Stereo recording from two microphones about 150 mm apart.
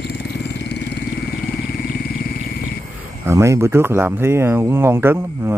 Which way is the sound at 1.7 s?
85° left.